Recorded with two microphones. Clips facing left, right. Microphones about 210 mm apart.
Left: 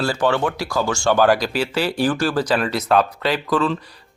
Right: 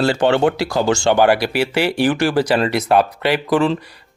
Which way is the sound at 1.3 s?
65° right (ahead or behind).